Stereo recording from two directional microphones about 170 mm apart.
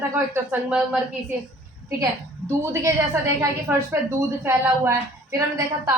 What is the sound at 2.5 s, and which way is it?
A woman's voice, 15° right (ahead or behind).